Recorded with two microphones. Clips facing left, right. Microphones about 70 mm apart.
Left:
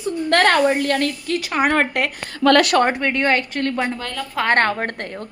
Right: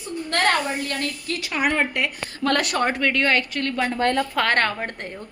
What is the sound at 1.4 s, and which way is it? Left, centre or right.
Speech, left.